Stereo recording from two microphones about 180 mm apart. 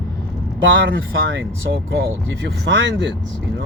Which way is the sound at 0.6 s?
85° right.